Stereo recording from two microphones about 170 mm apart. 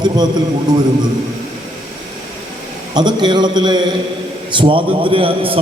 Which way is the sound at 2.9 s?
25° right (ahead or behind).